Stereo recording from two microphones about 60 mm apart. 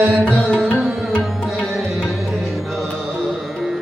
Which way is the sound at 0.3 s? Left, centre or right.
Centre.